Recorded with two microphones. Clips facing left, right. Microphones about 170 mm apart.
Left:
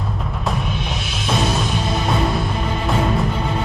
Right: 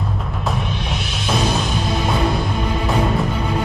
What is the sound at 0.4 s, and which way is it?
Music, centre (ahead or behind).